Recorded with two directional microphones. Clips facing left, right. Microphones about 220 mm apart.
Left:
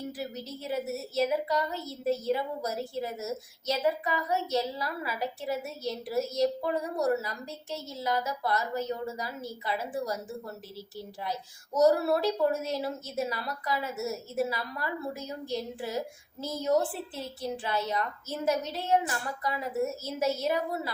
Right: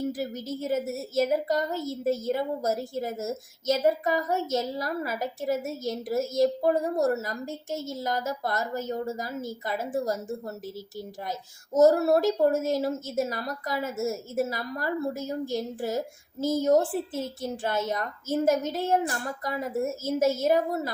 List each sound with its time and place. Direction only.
0.1 s a woman's voice: 45° right (ahead or behind)